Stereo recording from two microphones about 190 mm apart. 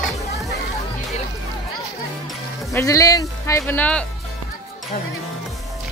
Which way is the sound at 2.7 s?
15° left (ahead or behind).